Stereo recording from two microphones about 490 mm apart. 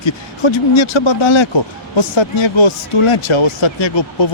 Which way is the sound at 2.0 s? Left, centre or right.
Left.